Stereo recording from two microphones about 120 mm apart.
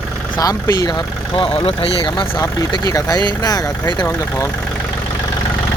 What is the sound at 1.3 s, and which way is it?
Speech, 55° left (ahead or behind).